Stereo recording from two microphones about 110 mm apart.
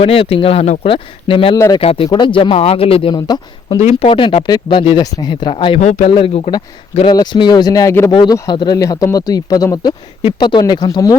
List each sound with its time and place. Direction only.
0.0 s speech: 60° left (ahead or behind); by 0.9 s 75° left (ahead or behind)
0.9 s speech: 55° left (ahead or behind)
2.0 s speech: 45° left (ahead or behind)
3.2 s speech: 40° left (ahead or behind)
3.8 s speech: 80° left
4.1 s speech: 55° left (ahead or behind)
4.4 s speech: 40° left (ahead or behind)
4.8 s speech: 55° left (ahead or behind)
5.1 s speech: 40° left (ahead or behind)
5.8 s speech: 90° left
6.1 s speech: 50° left (ahead or behind); by 8.1 s 25° left (ahead or behind)
8.1 s speech: 40° left (ahead or behind)